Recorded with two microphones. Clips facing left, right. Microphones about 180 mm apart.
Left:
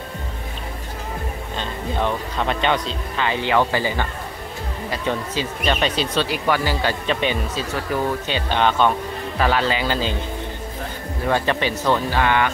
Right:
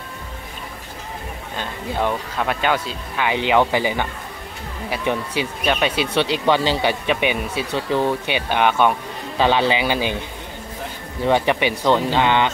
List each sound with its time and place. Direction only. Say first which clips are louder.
1.6 s speech: right 1 dB; 10° right (ahead or behind)
6.2 s speech: right 3 dB; 25° right (ahead or behind)
11.2 s speech: right 3 dB; 15° right (ahead or behind)